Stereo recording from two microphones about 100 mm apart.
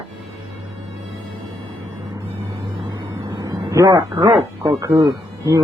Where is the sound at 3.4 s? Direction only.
35° right (ahead or behind).